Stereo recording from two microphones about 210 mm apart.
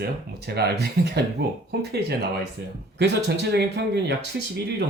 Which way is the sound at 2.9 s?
50° right (ahead or behind).